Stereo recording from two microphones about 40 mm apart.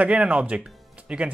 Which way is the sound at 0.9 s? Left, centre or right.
Right.